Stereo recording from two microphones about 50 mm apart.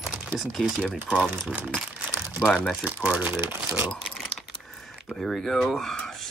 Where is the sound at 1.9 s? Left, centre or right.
Right.